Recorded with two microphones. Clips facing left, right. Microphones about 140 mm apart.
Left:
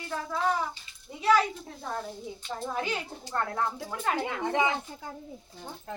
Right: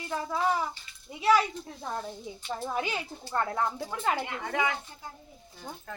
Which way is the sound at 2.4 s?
10° right (ahead or behind).